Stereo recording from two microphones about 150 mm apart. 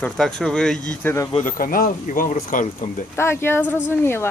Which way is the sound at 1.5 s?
65° left (ahead or behind).